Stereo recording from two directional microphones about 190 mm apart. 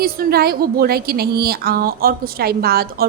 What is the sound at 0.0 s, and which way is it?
A woman's voice, 50° right (ahead or behind).